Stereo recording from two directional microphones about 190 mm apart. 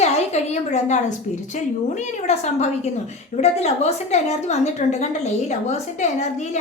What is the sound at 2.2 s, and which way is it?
A woman's voice, 35° left (ahead or behind).